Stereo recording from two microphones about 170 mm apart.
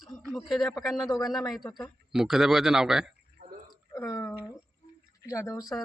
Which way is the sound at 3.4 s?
60° right (ahead or behind).